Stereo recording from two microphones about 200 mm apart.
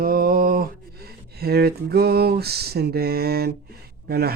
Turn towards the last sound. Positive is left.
turn(degrees=-50)  # may be behind; listen again after turning